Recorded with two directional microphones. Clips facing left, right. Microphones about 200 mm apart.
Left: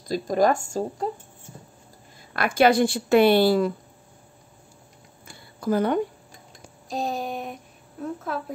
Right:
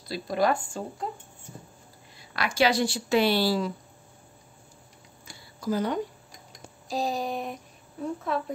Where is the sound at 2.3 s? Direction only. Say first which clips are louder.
Left 5 dB; 55° left (ahead or behind).